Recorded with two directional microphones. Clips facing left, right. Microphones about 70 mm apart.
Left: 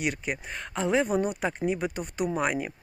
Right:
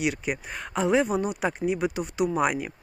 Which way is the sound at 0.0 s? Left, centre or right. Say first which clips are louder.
Right 3 dB; centre.